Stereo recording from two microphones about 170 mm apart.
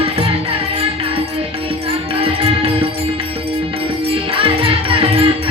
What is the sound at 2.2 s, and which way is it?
Music, 35° right (ahead or behind).